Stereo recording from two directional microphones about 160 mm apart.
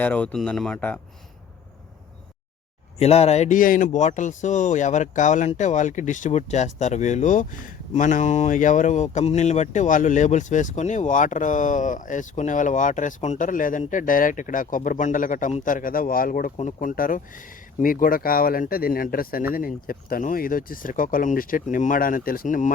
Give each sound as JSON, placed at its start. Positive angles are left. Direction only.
{"t": 0.0, "sound": "speech", "side_deg": 10}
{"t": 3.0, "sound": "speech", "side_deg": 40}
{"t": 16.6, "sound": "speech", "side_deg": 50}
{"t": 16.9, "sound": "speech", "side_deg": 60}